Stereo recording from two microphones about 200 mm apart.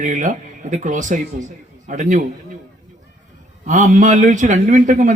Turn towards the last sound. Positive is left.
turn(degrees=-40)  # may be behind; listen again after turning